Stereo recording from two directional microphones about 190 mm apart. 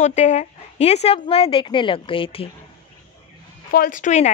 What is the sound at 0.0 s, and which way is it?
Speech, 35° left (ahead or behind).